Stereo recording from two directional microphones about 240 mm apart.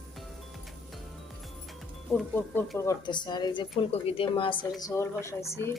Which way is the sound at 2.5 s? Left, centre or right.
Centre.